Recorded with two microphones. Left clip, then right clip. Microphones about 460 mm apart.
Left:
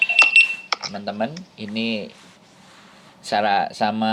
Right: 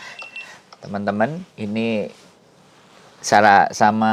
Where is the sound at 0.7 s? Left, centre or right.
Left.